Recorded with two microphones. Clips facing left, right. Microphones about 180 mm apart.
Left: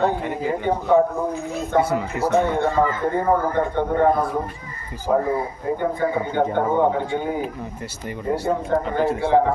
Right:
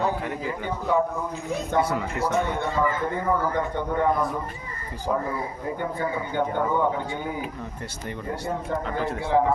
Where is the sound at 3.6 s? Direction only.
55° left (ahead or behind).